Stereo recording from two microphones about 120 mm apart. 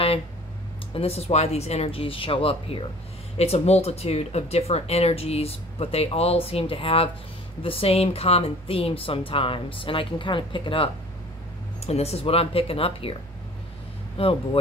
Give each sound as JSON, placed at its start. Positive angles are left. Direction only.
{"t": 0.9, "sound": "speech", "side_deg": 55}
{"t": 11.8, "sound": "speech", "side_deg": 60}
{"t": 14.1, "sound": "speech", "side_deg": 50}